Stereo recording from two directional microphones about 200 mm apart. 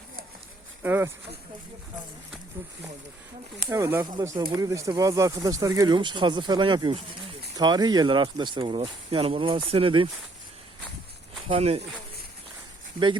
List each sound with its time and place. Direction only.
0.8 s speech: 10° right (ahead or behind)
3.7 s speech: 15° right (ahead or behind)
11.4 s speech: 30° right (ahead or behind)